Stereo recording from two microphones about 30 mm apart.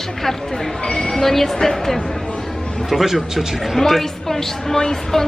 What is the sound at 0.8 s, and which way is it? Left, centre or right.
Speech, left.